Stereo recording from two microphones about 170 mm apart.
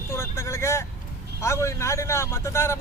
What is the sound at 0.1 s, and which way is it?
Vehicle, 15° left (ahead or behind).